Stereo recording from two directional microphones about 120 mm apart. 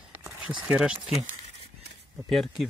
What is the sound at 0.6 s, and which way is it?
Speech, 10° right (ahead or behind).